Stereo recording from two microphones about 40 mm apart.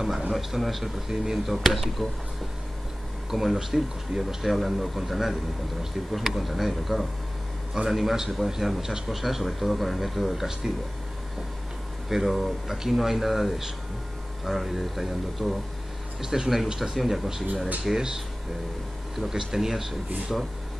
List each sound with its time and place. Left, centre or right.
0.3 s speech: centre
1.0 s speech: centre
1.4 s speech: centre
3.3 s speech: centre
12.1 s speech: centre
16.2 s speech: centre
16.9 s speech: centre